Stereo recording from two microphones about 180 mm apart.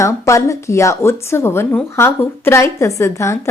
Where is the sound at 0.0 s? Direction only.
15° left (ahead or behind).